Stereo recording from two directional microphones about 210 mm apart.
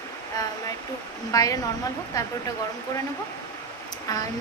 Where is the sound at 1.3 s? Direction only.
15° left (ahead or behind).